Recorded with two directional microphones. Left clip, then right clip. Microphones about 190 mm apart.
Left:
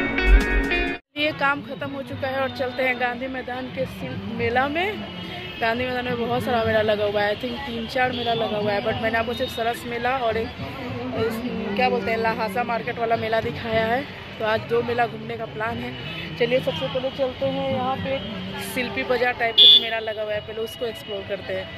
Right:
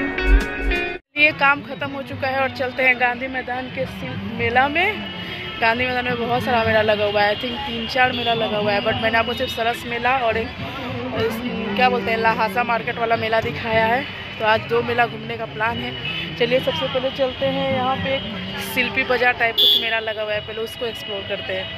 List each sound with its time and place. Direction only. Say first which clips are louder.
0.1 s music: even; centre (ahead or behind)
1.1 s music: right 7 dB; 10° left (ahead or behind)
2.2 s a man's voice: right 4 dB; 5° left (ahead or behind)
11.7 s a man's voice: right 4 dB; centre (ahead or behind)
16.3 s speech: right 2 dB; 5° right (ahead or behind)
18.8 s a man's voice: right 4 dB; 5° left (ahead or behind)
19.5 s speech: left 8 dB; 30° right (ahead or behind)
19.8 s a man's voice: right 4 dB; 5° left (ahead or behind)